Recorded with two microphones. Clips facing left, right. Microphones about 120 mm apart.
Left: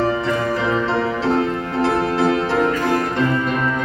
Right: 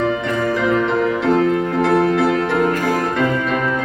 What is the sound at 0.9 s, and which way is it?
Music, 30° left (ahead or behind).